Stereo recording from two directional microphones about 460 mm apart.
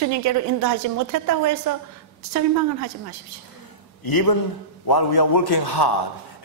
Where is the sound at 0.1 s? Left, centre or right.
Right.